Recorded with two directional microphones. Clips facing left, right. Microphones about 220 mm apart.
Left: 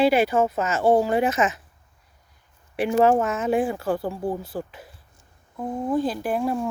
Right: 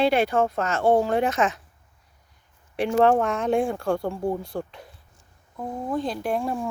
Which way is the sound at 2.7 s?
5° left (ahead or behind).